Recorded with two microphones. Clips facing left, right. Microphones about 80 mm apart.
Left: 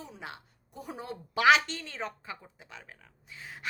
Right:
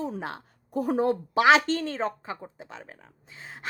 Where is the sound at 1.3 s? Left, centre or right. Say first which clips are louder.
Right 3 dB; right.